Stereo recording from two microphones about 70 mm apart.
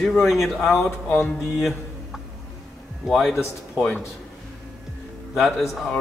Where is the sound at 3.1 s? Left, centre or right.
Centre.